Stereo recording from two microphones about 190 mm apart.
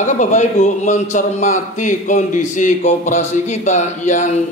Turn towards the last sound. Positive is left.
turn(degrees=40)  # may be behind; listen again after turning